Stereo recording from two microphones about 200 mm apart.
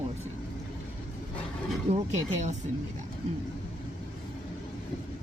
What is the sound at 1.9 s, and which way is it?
Speech, 35° right (ahead or behind).